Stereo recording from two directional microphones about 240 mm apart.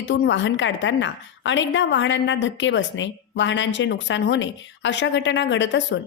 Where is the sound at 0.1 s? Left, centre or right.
Left.